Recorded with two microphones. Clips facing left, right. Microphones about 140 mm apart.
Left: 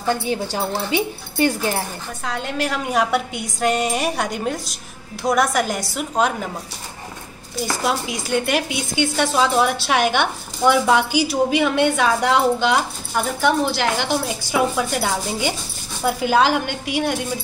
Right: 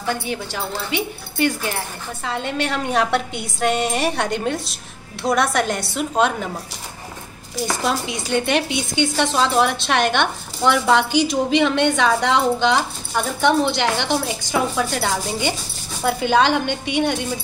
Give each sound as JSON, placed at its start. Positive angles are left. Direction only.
{"t": 0.3, "sound": "speech", "side_deg": 35}
{"t": 2.2, "sound": "speech", "side_deg": 0}
{"t": 7.6, "sound": "speech", "side_deg": 5}